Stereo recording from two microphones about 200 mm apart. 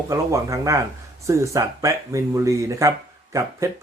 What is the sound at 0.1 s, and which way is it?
Speech, 15° right (ahead or behind).